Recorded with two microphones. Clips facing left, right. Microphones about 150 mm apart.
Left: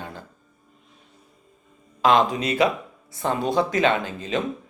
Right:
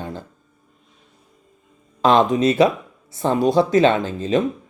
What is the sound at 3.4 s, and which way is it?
Speech, 20° left (ahead or behind).